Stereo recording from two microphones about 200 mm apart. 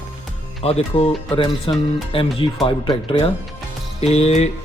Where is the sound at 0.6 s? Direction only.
30° left (ahead or behind).